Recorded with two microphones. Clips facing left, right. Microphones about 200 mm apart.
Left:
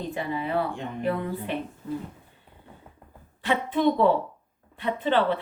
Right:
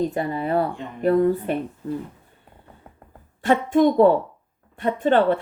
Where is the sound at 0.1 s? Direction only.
45° right (ahead or behind).